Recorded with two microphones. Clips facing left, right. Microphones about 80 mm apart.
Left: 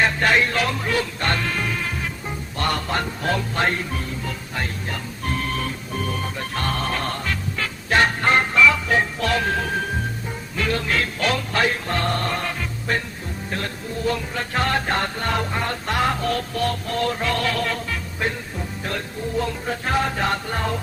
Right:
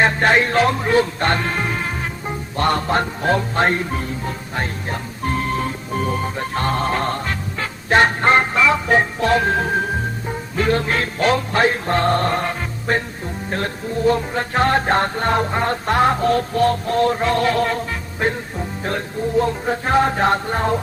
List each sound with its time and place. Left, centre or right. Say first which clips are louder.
0.0 s music: right 3 dB; right